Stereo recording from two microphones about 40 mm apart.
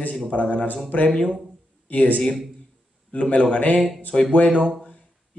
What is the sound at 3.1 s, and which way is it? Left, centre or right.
Speech, left.